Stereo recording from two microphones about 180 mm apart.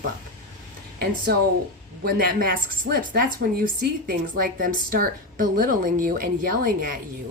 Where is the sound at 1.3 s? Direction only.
60° right (ahead or behind).